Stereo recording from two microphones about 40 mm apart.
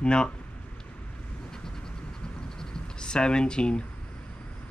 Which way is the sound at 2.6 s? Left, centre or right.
Left.